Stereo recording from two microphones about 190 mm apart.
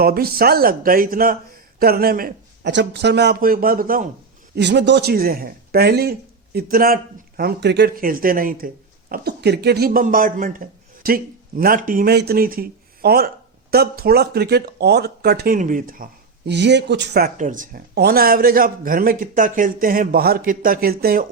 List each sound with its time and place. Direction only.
0.0 s speech: 50° right (ahead or behind)
4.5 s speech: 65° right (ahead or behind); by 16.0 s 45° right (ahead or behind)
16.5 s speech: 65° right (ahead or behind)